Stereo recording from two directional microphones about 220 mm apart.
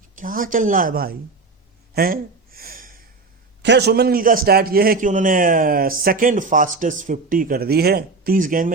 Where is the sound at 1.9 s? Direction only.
40° right (ahead or behind).